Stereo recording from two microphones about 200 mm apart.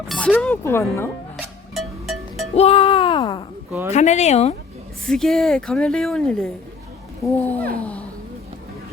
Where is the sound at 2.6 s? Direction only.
30° left (ahead or behind).